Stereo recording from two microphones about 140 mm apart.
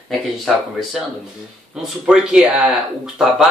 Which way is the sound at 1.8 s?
5° right (ahead or behind).